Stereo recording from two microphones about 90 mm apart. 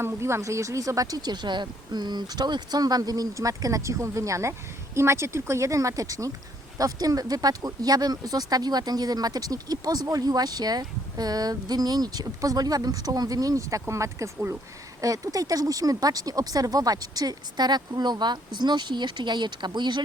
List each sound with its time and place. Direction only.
0.0 s speech: 30° right (ahead or behind); by 20.0 s 55° right (ahead or behind)